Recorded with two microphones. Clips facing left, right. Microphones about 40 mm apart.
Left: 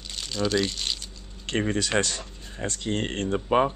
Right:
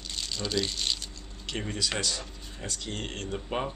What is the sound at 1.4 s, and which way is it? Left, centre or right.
Speech, left.